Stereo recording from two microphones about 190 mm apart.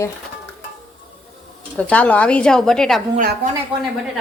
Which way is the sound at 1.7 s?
5° left (ahead or behind).